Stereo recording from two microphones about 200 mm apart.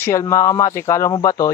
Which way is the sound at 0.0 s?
15° left (ahead or behind).